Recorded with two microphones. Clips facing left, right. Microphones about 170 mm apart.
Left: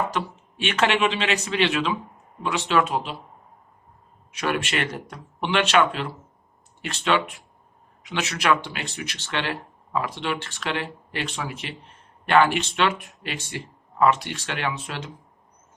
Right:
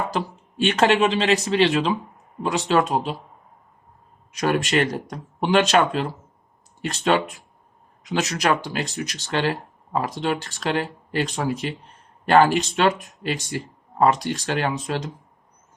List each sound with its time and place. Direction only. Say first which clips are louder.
0.1 s speech: right 2 dB; 35° right (ahead or behind)
4.3 s speech: right 4 dB; 40° right (ahead or behind)